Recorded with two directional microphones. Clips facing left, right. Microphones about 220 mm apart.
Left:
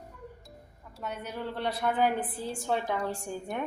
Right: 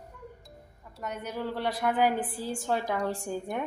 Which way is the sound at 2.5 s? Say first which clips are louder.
Even; centre (ahead or behind).